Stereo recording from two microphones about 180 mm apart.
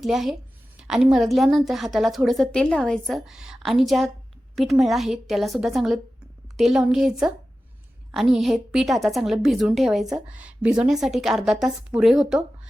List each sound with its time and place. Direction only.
0.0 s a woman's voice: centre (ahead or behind)